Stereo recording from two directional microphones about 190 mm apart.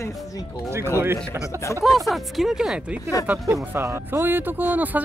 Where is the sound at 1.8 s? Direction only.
Centre (ahead or behind).